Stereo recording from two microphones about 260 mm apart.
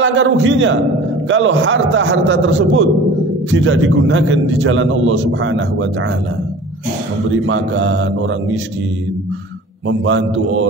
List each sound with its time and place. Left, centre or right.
0.0 s a man's voice: right
7.4 s a man's voice: right
9.8 s a man's voice: right